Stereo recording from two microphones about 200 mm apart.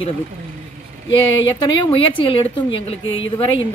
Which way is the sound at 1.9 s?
25° left (ahead or behind).